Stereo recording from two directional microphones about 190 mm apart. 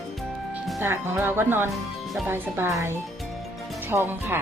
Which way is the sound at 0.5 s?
10° right (ahead or behind).